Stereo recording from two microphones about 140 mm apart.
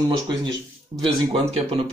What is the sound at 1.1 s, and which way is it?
Speech, 40° right (ahead or behind).